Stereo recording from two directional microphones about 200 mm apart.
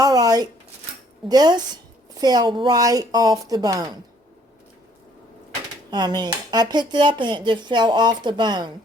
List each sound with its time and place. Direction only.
0.0 s a sound: 20° right (ahead or behind)
1.3 s speech: 20° right (ahead or behind)
5.9 s speech: 20° right (ahead or behind)